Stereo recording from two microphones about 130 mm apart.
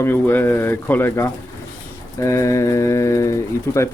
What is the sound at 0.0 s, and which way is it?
Speech, 15° left (ahead or behind).